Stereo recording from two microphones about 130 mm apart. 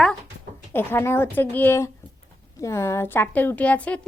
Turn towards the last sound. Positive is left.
turn(degrees=10)  # may be behind; listen again after turning